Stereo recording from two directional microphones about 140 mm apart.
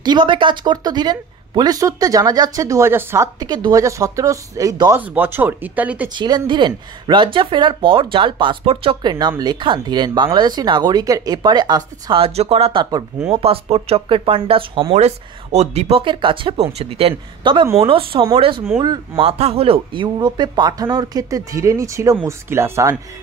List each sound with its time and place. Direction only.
0.0 s speech: 35° right (ahead or behind); by 3.3 s 15° right (ahead or behind)
3.3 s speech: 30° right (ahead or behind)
5.0 s speech: 10° right (ahead or behind)
6.1 s speech: 30° right (ahead or behind)
15.0 s speech: 50° right (ahead or behind); by 22.9 s 20° right (ahead or behind)